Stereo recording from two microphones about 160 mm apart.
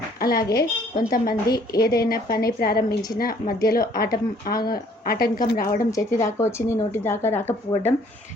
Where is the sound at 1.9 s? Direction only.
75° left (ahead or behind).